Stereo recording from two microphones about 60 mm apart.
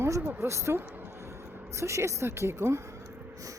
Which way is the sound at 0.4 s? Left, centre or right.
Right.